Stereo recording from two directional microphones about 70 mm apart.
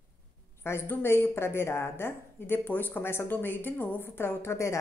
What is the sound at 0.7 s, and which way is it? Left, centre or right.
A woman's voice, left.